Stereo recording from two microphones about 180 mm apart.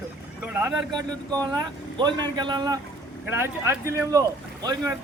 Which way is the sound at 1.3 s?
25° right (ahead or behind).